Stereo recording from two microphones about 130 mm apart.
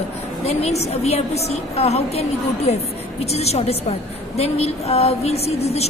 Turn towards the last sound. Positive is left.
turn(degrees=55)  # may be behind; listen again after turning